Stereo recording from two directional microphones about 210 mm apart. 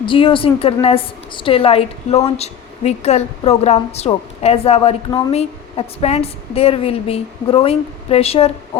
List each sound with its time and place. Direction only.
0.0 s a woman's voice: 25° left (ahead or behind)